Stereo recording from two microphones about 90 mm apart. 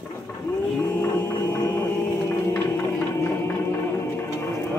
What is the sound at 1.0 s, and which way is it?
Music, 25° left (ahead or behind).